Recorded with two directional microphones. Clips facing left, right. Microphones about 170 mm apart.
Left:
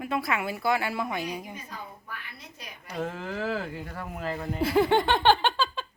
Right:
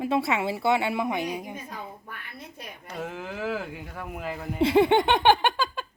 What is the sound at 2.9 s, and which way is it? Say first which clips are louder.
Speech: left 2 dB; 5° right (ahead or behind).